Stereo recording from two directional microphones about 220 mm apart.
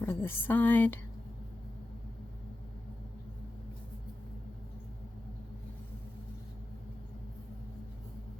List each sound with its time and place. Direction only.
0.0 s speech: 10° left (ahead or behind)